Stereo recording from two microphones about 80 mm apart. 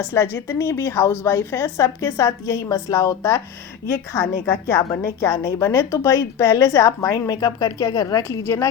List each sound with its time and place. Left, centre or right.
0.1 s a woman's voice: left